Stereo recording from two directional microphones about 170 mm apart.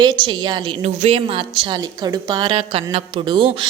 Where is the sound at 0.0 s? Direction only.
25° right (ahead or behind).